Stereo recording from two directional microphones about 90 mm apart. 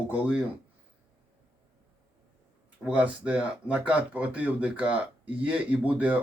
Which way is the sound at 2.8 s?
15° right (ahead or behind).